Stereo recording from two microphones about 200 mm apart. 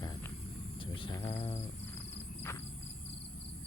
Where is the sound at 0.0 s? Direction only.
20° left (ahead or behind).